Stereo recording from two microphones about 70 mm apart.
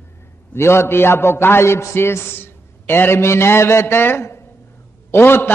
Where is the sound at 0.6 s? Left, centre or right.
Left.